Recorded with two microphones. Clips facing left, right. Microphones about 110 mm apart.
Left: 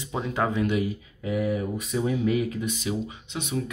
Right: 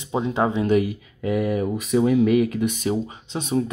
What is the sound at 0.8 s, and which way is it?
Speech, 85° right.